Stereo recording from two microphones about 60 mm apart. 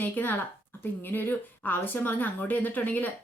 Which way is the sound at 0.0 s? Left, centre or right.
Left.